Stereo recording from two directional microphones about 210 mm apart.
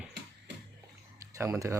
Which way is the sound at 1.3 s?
15° right (ahead or behind).